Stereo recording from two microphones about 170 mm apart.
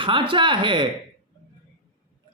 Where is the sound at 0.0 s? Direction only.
30° right (ahead or behind).